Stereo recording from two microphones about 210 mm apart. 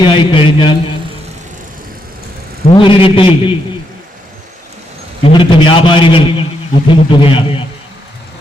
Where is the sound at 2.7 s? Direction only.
25° left (ahead or behind).